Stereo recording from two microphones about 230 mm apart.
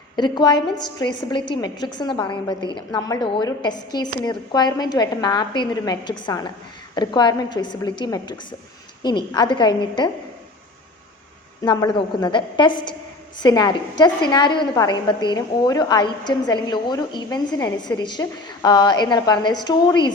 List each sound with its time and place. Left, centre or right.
0.2 s a woman's voice: centre
11.6 s a woman's voice: centre